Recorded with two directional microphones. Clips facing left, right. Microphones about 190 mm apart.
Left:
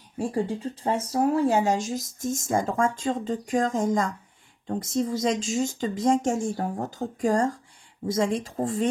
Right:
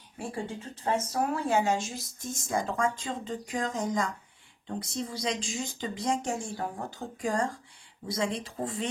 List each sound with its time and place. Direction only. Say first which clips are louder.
0.2 s speech: left 9 dB; 40° left (ahead or behind)